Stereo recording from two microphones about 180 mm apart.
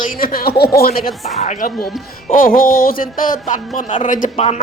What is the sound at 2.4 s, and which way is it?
Speech, 55° left (ahead or behind).